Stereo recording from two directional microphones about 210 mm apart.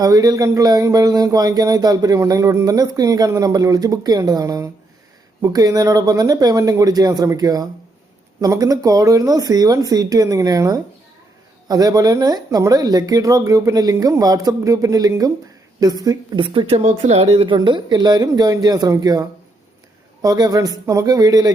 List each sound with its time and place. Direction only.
0.0 s speech: 15° right (ahead or behind)
20.2 s speech: 15° right (ahead or behind)